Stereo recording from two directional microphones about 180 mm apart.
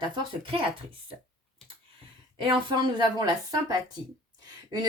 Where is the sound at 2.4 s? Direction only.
25° right (ahead or behind).